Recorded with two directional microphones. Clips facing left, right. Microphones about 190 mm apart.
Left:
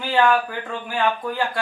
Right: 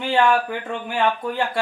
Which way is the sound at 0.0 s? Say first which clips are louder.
Even; 25° right (ahead or behind).